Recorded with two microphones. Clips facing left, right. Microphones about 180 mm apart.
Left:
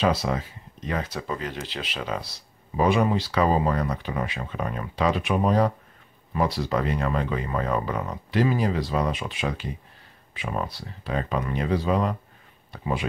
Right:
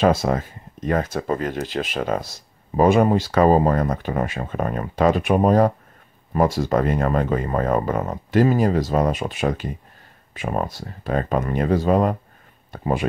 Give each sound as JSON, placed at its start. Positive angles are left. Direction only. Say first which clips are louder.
{"t": 0.0, "sound": "speech", "louder": "right 5 dB", "side_deg": -45}